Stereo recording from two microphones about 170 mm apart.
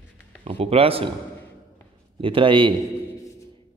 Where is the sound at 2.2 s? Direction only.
30° right (ahead or behind).